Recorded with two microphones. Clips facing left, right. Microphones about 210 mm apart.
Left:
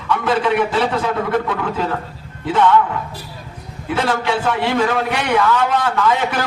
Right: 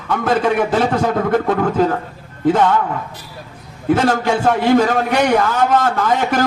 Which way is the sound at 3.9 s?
45° right (ahead or behind).